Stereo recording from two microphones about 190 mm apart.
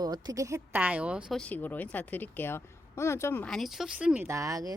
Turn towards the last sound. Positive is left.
turn(degrees=-20)  # may be behind; listen again after turning